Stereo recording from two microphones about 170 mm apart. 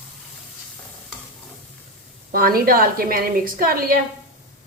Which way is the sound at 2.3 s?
60° right (ahead or behind).